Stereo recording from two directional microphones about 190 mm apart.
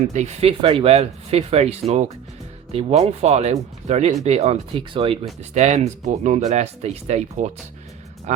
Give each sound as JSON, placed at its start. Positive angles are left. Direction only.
{"t": 0.1, "sound": "speech", "side_deg": -35}